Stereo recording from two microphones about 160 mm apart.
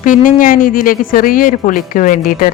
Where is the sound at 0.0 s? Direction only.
55° left (ahead or behind).